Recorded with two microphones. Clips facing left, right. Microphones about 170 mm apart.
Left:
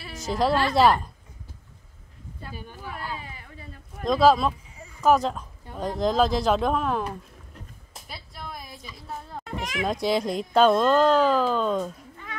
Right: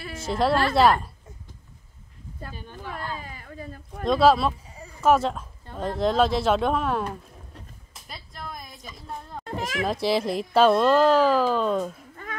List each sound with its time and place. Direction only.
0.1 s a woman's voice: centre (ahead or behind)
2.5 s a sound: 10° left (ahead or behind)
3.2 s cat: 40° right (ahead or behind)
4.0 s speech: centre (ahead or behind)
8.1 s a sound: 5° left (ahead or behind)
9.0 s speech: 5° left (ahead or behind)
9.5 s a child's voice: 40° right (ahead or behind)
9.8 s speech: centre (ahead or behind)